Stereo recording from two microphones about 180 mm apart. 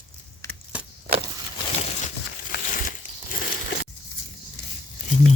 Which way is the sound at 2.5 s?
50° left (ahead or behind).